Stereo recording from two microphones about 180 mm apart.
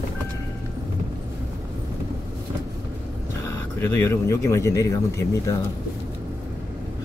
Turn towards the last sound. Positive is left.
turn(degrees=20)  # may be behind; listen again after turning